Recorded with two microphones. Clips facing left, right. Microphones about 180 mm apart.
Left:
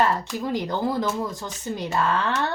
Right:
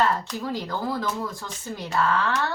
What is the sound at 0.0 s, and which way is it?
A woman's voice, 20° left (ahead or behind).